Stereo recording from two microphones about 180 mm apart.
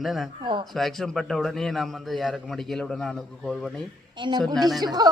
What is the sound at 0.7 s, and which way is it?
A man's voice, centre (ahead or behind).